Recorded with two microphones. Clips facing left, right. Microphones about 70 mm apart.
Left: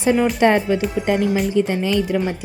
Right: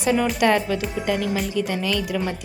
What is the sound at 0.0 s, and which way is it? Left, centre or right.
Speech, left.